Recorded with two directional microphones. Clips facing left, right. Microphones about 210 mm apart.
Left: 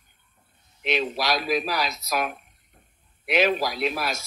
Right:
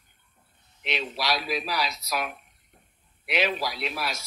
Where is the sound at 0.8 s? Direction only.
45° left (ahead or behind).